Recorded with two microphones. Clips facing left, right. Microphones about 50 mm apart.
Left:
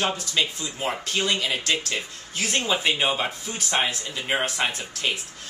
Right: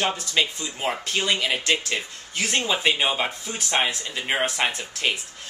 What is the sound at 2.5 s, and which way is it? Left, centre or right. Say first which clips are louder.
Speech: right 1 dB; centre.